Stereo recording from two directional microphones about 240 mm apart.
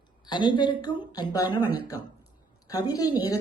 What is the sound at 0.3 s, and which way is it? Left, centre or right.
A woman's voice, centre.